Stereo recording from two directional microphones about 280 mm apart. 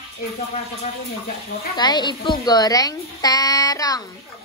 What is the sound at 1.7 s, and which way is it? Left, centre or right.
A woman's voice, centre.